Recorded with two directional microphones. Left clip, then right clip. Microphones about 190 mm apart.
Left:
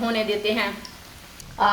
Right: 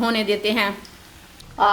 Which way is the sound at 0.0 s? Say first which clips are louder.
Right 3 dB; 55° right (ahead or behind).